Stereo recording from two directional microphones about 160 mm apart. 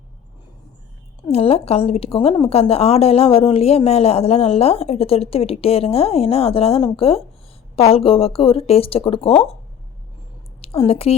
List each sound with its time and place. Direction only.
1.3 s a woman's voice: 40° left (ahead or behind)
10.6 s a woman's voice: 40° left (ahead or behind)